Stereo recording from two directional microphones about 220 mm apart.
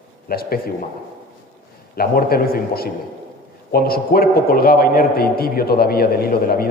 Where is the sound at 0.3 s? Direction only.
45° left (ahead or behind).